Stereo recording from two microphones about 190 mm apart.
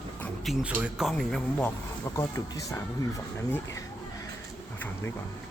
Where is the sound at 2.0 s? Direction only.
15° left (ahead or behind).